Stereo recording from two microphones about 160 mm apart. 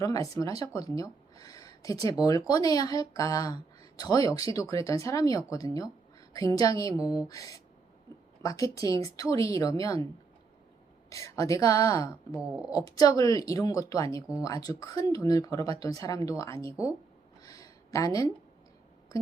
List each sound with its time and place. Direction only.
0.0 s speech: 20° left (ahead or behind)
11.1 s speech: 20° left (ahead or behind)
12.4 s a woman's voice: 5° right (ahead or behind)
12.7 s speech: 25° left (ahead or behind)
17.4 s a sound: 20° left (ahead or behind)